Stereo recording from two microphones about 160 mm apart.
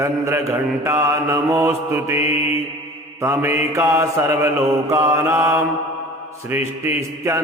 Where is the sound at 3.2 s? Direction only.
15° right (ahead or behind).